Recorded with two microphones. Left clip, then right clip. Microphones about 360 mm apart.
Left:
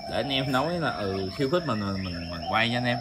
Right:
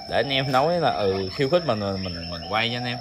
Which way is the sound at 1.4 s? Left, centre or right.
Centre.